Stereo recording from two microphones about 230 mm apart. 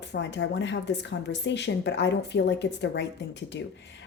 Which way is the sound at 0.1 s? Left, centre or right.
Left.